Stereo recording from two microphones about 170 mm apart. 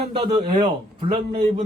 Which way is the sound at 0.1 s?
30° right (ahead or behind).